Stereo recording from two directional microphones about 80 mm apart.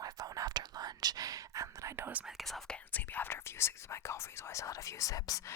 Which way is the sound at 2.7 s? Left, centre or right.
Left.